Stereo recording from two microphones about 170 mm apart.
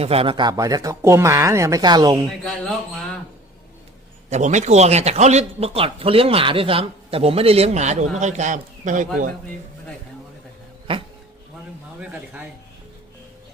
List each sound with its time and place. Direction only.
0.0 s speech: 35° right (ahead or behind)
2.4 s speech: centre (ahead or behind)
4.3 s a man's voice: 45° right (ahead or behind)
10.9 s a man's voice: 30° right (ahead or behind)
11.9 s speech: 5° right (ahead or behind)